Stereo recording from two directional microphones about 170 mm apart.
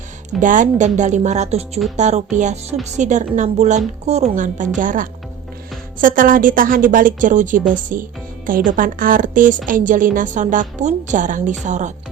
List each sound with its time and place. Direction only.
0.3 s a woman's voice: 50° right (ahead or behind)